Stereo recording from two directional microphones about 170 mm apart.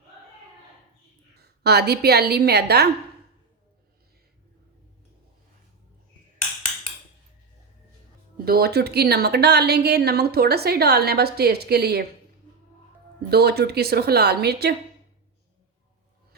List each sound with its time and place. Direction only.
1.6 s a woman's voice: 70° right (ahead or behind)
8.4 s a woman's voice: 65° right (ahead or behind)
13.3 s a woman's voice: 70° right (ahead or behind)